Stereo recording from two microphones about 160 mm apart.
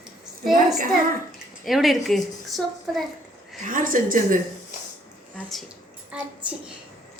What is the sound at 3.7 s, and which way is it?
Speech, 60° right (ahead or behind).